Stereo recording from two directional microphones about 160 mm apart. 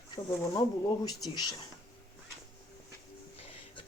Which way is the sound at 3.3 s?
35° left (ahead or behind).